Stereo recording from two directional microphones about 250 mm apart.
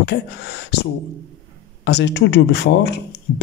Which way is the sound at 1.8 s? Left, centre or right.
Left.